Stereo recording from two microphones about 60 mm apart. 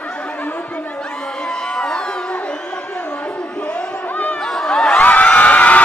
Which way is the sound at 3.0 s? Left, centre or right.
Centre.